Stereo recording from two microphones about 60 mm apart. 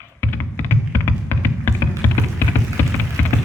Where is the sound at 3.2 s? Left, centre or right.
Left.